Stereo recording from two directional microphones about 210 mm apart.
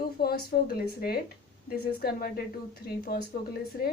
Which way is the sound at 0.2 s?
45° left (ahead or behind).